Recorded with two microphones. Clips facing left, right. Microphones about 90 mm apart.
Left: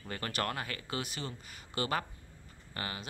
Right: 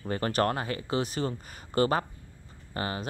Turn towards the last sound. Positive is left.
turn(degrees=-30)  # may be behind; listen again after turning